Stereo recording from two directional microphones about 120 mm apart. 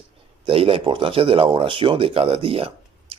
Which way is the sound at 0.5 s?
50° right (ahead or behind).